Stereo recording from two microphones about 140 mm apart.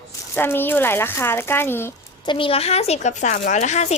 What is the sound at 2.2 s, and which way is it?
Speech, 40° left (ahead or behind).